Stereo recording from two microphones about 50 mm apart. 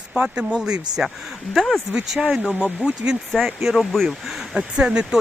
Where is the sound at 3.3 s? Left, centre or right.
Centre.